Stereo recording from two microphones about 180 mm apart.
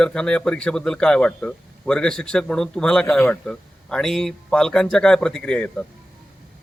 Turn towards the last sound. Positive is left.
turn(degrees=5)  # may be behind; listen again after turning